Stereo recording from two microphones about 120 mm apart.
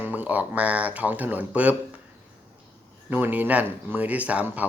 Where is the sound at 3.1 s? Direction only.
15° right (ahead or behind).